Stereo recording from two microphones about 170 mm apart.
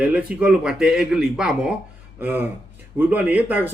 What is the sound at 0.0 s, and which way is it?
A man's voice, 10° right (ahead or behind).